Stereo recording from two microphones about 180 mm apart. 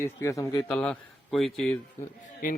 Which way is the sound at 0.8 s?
5° left (ahead or behind).